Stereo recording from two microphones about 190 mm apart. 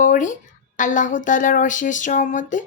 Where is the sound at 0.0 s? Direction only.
40° left (ahead or behind).